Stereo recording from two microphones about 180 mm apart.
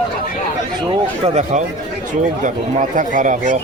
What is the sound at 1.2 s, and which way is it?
A man's voice, 40° right (ahead or behind).